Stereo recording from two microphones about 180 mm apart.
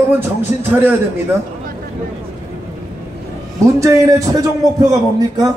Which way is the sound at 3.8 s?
20° right (ahead or behind).